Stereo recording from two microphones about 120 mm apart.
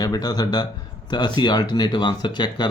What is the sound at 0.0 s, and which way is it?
Speech, 35° left (ahead or behind).